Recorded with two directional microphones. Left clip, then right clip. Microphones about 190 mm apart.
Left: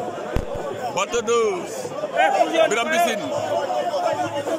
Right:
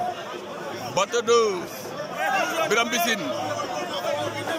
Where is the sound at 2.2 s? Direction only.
45° left (ahead or behind).